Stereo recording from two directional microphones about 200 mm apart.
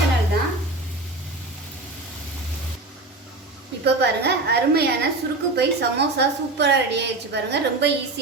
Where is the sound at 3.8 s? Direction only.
55° right (ahead or behind).